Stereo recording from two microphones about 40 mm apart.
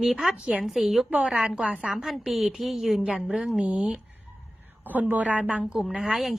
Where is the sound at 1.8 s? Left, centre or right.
Centre.